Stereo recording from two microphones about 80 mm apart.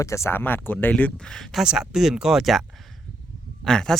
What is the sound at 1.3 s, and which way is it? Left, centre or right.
Speech, centre.